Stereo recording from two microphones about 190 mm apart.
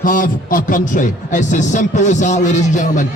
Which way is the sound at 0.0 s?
45° left (ahead or behind).